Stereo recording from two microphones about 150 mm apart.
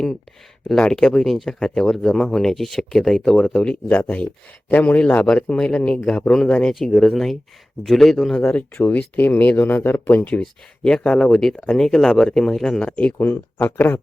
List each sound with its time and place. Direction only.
0.7 s speech: 5° left (ahead or behind)